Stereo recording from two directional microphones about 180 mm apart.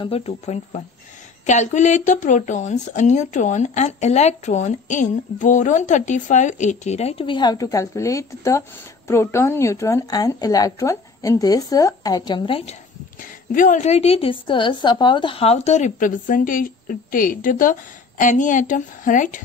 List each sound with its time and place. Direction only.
0.0 s speech: 35° left (ahead or behind)
13.2 s a woman's voice: 50° left (ahead or behind)